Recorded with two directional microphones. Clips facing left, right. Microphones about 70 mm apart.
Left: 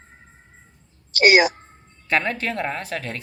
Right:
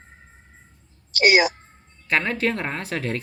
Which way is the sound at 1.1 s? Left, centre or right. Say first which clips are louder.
Left 2 dB; left.